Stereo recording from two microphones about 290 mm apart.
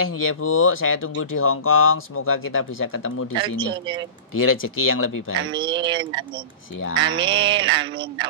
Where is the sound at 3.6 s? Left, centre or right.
Centre.